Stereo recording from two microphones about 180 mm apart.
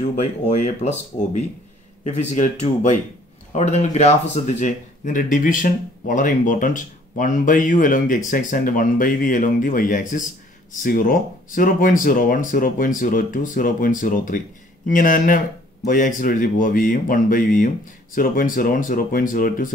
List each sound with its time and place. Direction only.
0.2 s speech: 40° left (ahead or behind)